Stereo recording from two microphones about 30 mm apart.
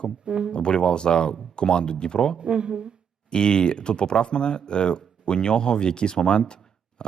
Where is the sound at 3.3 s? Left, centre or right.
Left.